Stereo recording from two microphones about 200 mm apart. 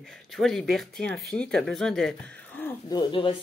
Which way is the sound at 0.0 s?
Centre (ahead or behind).